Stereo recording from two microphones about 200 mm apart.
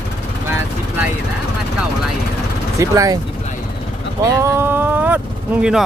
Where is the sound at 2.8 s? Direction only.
15° right (ahead or behind).